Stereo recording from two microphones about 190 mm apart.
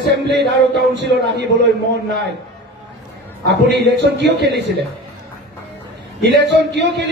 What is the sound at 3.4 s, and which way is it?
A man's voice, 65° right (ahead or behind).